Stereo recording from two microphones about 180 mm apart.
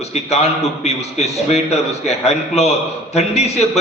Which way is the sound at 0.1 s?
35° left (ahead or behind).